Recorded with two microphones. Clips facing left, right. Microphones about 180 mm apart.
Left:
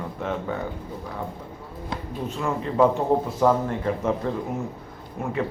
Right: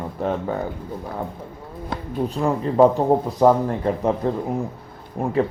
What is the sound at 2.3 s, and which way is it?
Speech, 35° right (ahead or behind).